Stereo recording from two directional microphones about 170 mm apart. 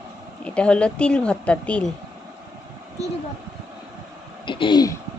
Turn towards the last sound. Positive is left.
turn(degrees=25)  # may be behind; listen again after turning